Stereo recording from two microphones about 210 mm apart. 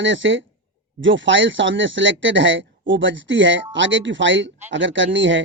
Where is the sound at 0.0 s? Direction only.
60° right (ahead or behind).